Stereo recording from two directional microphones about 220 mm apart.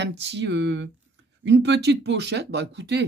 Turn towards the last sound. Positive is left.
turn(degrees=-50)  # may be behind; listen again after turning